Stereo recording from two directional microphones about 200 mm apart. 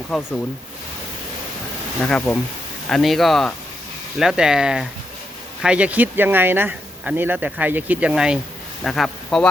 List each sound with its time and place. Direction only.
0.1 s speech: 5° right (ahead or behind)
2.0 s speech: 5° left (ahead or behind)